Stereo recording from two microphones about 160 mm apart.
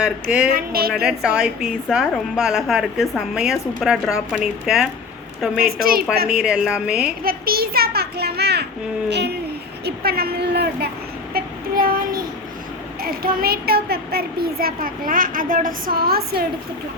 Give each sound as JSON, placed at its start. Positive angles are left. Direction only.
{"t": 0.0, "sound": "speech", "side_deg": -10}
{"t": 0.5, "sound": "a child's voice", "side_deg": -70}
{"t": 1.0, "sound": "a woman's voice", "side_deg": -5}
{"t": 5.5, "sound": "a child's voice", "side_deg": -65}
{"t": 6.2, "sound": "a woman's voice", "side_deg": -5}
{"t": 7.3, "sound": "a child's voice", "side_deg": -70}
{"t": 9.8, "sound": "a woman's voice", "side_deg": -75}
{"t": 11.3, "sound": "child singing", "side_deg": -70}
{"t": 13.0, "sound": "a child's voice", "side_deg": -70}